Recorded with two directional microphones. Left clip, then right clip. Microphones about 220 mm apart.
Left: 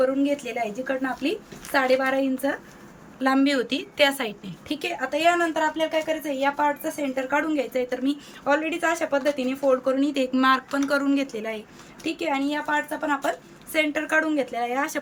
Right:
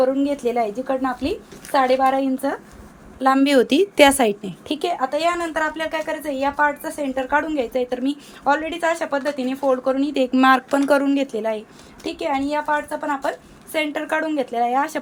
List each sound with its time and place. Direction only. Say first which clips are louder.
0.0 s a woman's voice: right 4 dB; 15° right (ahead or behind)
4.8 s a woman's voice: right 3 dB; 10° right (ahead or behind)